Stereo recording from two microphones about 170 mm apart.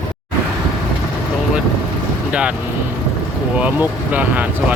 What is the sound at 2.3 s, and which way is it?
Vehicle, 5° right (ahead or behind).